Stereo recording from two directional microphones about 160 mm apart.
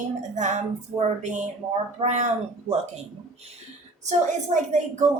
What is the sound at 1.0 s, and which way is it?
A woman's voice, 50° right (ahead or behind).